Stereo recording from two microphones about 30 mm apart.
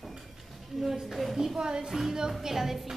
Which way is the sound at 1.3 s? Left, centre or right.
Centre.